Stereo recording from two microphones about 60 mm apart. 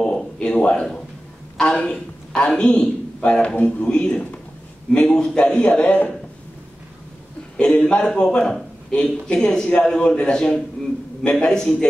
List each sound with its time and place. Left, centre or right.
0.0 s a sound: centre
1.6 s a man's voice: centre
7.5 s a man's voice: centre